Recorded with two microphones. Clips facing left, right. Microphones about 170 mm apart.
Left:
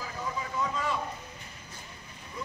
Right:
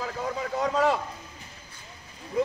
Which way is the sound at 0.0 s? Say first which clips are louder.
Right 5 dB; 70° right (ahead or behind).